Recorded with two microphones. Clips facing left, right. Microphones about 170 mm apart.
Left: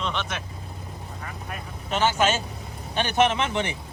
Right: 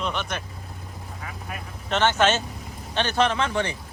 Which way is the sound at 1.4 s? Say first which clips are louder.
Right 2 dB; 5° left (ahead or behind).